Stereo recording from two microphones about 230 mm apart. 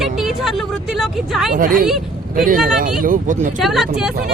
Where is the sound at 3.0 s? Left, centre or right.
Right.